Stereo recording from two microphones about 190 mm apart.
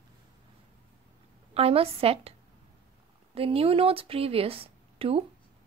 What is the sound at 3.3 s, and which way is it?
Speech, 30° right (ahead or behind).